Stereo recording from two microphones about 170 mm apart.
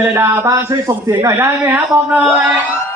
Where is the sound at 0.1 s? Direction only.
15° right (ahead or behind).